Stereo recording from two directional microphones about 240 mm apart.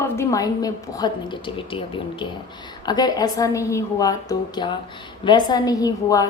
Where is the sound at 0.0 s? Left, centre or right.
Centre.